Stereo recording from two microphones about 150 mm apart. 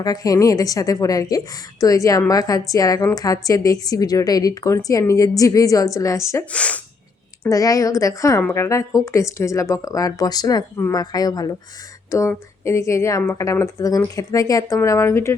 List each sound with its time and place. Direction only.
0.0 s a woman's voice: 25° left (ahead or behind)
6.5 s speech: 10° left (ahead or behind)
7.4 s a woman's voice: 25° left (ahead or behind)